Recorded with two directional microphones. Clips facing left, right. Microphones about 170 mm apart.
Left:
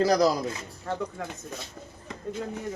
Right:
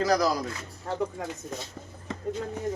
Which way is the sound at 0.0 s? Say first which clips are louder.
Left 2 dB; 30° left (ahead or behind).